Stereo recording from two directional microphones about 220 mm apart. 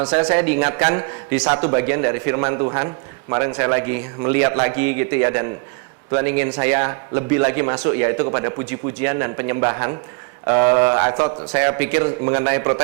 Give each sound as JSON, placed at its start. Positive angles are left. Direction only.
{"t": 0.2, "sound": "a man's voice", "side_deg": -25}
{"t": 0.4, "sound": "a man's voice", "side_deg": -10}